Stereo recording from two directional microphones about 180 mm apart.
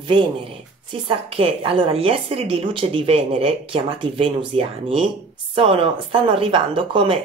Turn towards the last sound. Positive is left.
turn(degrees=-30)  # may be behind; listen again after turning